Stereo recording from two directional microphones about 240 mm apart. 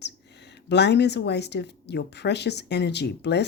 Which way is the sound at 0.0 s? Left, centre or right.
Left.